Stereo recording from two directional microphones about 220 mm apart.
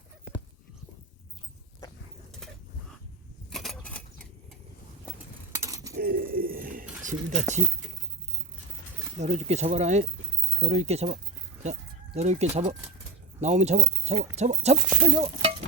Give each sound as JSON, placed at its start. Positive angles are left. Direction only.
{"t": 3.5, "sound": "a sound", "side_deg": 0}
{"t": 5.5, "sound": "a sound", "side_deg": -15}
{"t": 6.0, "sound": "bird", "side_deg": -40}
{"t": 7.0, "sound": "speech", "side_deg": -35}
{"t": 9.1, "sound": "speech", "side_deg": -30}
{"t": 15.0, "sound": "chink", "side_deg": -25}